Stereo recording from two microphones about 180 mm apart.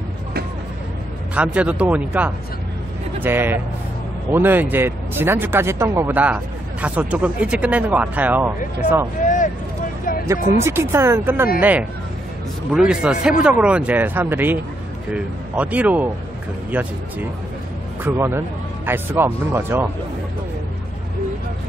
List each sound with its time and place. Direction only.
1.3 s speech: 5° right (ahead or behind)
9.2 s a sound: 45° left (ahead or behind)
10.2 s speech: 15° right (ahead or behind)
12.7 s a man's voice: 5° right (ahead or behind)
18.0 s speech: 15° right (ahead or behind)